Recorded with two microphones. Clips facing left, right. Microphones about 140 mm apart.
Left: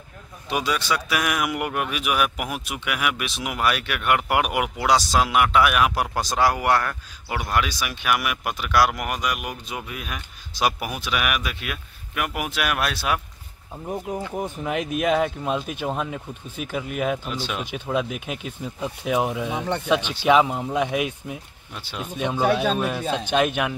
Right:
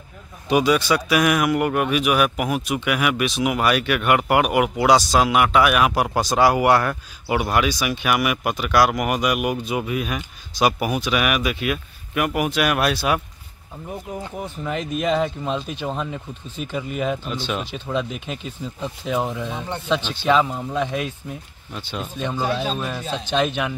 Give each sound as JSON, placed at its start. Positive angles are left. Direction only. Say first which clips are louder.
{"t": 0.5, "sound": "speech", "louder": "right 7 dB", "side_deg": -5}
{"t": 14.4, "sound": "speech", "louder": "right 1 dB", "side_deg": 10}